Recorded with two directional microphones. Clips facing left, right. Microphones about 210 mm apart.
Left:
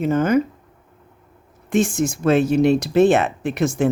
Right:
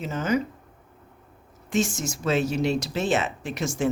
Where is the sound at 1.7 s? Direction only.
55° left (ahead or behind).